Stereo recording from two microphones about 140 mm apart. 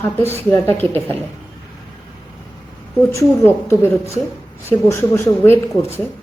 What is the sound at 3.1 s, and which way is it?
Speech, 20° left (ahead or behind).